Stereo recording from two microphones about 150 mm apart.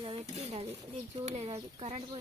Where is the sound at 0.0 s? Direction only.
40° right (ahead or behind).